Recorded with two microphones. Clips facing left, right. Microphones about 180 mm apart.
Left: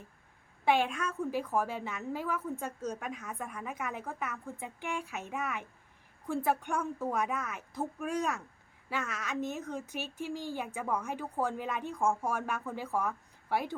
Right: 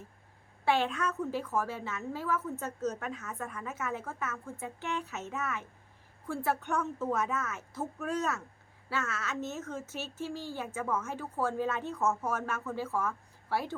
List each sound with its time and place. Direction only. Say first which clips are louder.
0.6 s a woman's voice: even; 15° left (ahead or behind)